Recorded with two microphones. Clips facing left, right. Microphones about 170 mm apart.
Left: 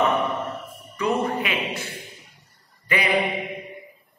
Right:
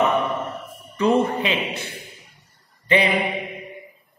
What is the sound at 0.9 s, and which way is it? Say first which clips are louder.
Speech: right 5 dB; 30° right (ahead or behind).